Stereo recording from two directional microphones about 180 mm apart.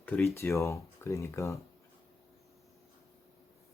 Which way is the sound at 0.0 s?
10° left (ahead or behind).